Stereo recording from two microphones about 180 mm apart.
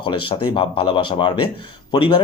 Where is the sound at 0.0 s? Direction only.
30° left (ahead or behind).